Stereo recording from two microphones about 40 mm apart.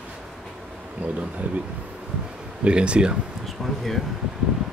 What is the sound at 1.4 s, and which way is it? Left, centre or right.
Speech, right.